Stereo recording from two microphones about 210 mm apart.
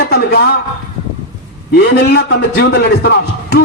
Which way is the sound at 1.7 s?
50° left (ahead or behind).